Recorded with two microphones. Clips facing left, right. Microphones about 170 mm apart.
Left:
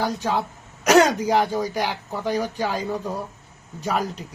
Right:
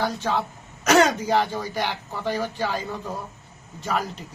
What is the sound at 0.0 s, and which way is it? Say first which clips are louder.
Speech: left 1 dB; 10° left (ahead or behind).